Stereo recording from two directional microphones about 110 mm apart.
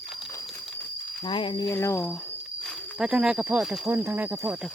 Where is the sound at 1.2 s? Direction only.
50° left (ahead or behind).